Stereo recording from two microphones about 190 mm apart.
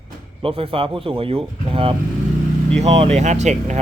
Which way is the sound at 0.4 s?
30° right (ahead or behind).